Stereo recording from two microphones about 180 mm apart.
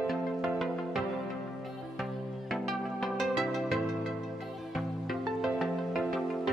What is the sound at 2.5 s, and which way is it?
Music, centre (ahead or behind).